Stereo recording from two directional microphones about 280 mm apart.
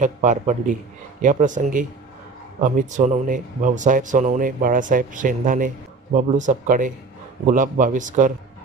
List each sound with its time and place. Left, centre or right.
0.0 s speech: right